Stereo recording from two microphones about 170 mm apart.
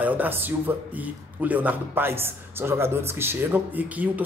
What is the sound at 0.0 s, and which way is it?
Speech, 10° right (ahead or behind).